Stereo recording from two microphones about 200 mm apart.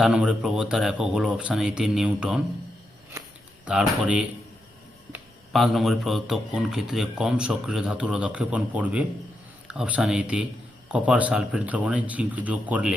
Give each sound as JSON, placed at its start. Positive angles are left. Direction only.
{"t": 0.0, "sound": "speech", "side_deg": -5}
{"t": 3.7, "sound": "speech", "side_deg": -5}